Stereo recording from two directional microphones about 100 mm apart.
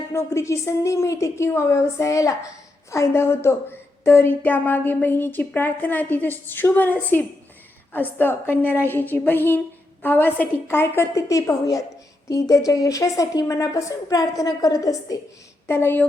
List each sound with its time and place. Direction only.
0.1 s a woman's voice: 30° left (ahead or behind)
15.6 s a woman's voice: 25° left (ahead or behind)